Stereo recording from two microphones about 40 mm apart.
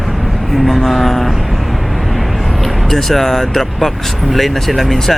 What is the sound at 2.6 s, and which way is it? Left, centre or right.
Speech, centre.